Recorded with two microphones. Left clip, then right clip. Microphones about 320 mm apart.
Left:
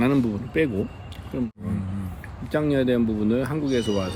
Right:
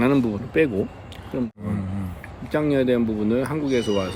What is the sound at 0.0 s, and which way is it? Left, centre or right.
Speech, centre.